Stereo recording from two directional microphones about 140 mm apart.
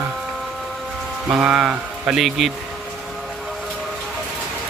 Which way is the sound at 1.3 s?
5° right (ahead or behind).